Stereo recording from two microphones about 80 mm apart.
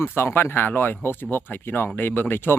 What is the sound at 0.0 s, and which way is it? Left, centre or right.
Speech, left.